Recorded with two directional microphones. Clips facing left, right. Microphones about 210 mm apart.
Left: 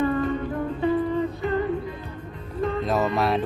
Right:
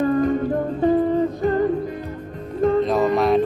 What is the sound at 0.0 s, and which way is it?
Humming, 40° right (ahead or behind).